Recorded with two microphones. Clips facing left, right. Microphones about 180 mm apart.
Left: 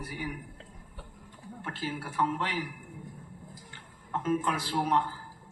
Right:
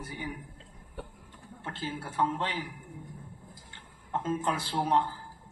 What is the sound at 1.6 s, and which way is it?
Speech, 25° right (ahead or behind).